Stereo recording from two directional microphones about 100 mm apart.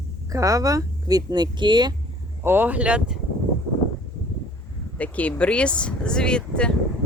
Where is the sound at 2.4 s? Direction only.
20° right (ahead or behind).